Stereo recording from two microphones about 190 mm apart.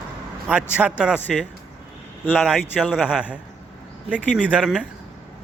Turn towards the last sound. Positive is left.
turn(degrees=-5)  # may be behind; listen again after turning